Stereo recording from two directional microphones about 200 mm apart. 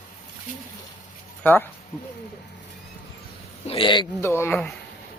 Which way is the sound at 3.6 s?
25° left (ahead or behind).